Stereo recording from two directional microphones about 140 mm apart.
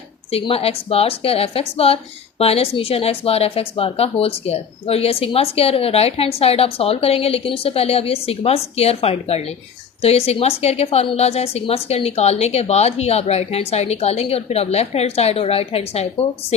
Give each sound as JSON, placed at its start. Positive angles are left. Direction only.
{"t": 0.3, "sound": "a woman's voice", "side_deg": 45}